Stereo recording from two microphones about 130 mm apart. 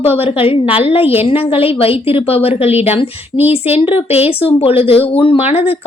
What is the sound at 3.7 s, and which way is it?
A woman's voice, 50° left (ahead or behind).